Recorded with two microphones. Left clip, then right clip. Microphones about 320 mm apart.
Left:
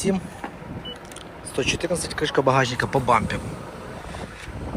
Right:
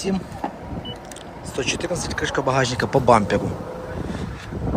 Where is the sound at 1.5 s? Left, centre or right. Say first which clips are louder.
Even; centre.